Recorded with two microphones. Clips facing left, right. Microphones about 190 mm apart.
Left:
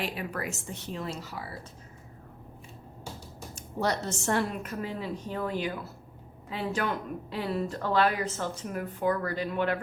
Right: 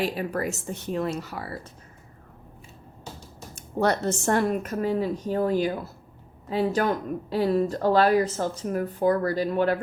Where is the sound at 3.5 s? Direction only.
55° right (ahead or behind).